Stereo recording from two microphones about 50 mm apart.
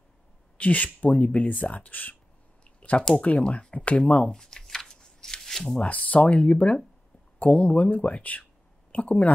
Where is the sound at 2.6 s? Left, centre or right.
Left; by 5.8 s centre.